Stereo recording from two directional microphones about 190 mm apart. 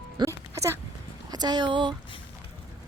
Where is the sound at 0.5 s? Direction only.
15° right (ahead or behind).